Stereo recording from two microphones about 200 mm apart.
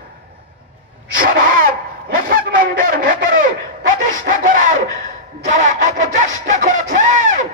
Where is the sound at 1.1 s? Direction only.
45° right (ahead or behind).